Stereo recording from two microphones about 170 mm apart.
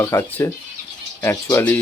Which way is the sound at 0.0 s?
15° left (ahead or behind).